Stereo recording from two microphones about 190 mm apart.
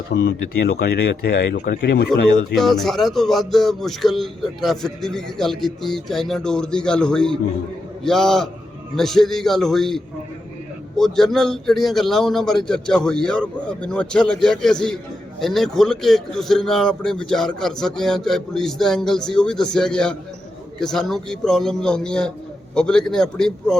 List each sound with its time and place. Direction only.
0.1 s speech: 65° left (ahead or behind)
2.6 s a man's voice: centre (ahead or behind)